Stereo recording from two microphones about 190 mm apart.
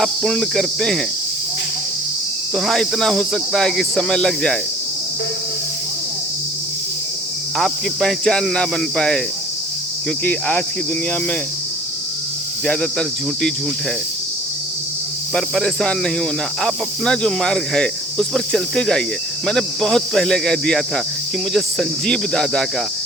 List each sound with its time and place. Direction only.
0.0 s speech: centre (ahead or behind)
2.6 s speech: centre (ahead or behind)
7.6 s speech: 5° left (ahead or behind)
10.2 s cricket: 10° left (ahead or behind)
12.6 s speech: 5° left (ahead or behind)
15.4 s speech: centre (ahead or behind)